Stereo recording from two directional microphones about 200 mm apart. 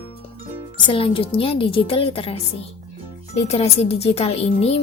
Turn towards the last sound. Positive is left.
turn(degrees=30)  # may be behind; listen again after turning